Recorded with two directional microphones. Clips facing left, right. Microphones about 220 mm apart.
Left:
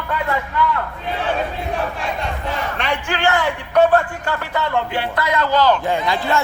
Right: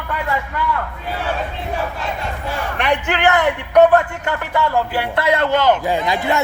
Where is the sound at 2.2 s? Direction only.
10° right (ahead or behind).